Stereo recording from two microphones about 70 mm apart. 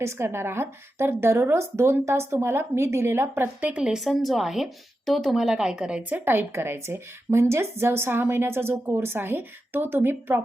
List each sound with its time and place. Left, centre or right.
0.0 s speech: right
3.6 s speech: centre
3.9 s speech: centre; by 10.4 s right